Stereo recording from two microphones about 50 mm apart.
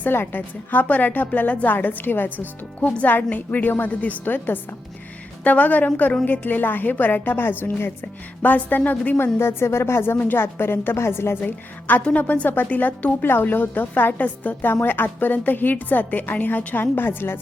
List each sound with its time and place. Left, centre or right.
0.1 s a woman's voice: left
8.4 s a woman's voice: left
9.1 s a woman's voice: left
11.4 s a woman's voice: left